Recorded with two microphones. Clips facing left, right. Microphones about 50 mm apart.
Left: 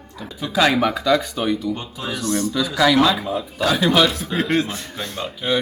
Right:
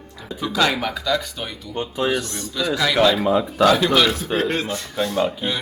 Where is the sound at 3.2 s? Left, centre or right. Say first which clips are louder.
Right 6 dB; right.